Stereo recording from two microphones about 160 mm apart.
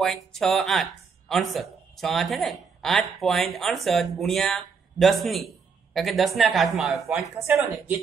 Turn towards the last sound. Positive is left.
turn(degrees=-15)  # may be behind; listen again after turning